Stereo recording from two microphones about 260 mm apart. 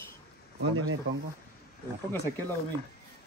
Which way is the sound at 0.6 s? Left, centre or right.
Right.